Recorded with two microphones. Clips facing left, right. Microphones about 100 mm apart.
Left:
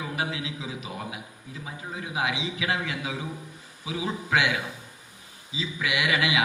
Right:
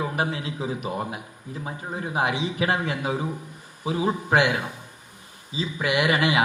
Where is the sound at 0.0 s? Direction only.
40° right (ahead or behind).